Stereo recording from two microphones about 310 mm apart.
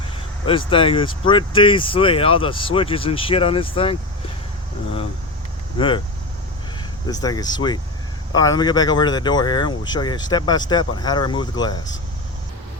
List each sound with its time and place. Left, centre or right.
0.4 s speech: centre
7.1 s speech: centre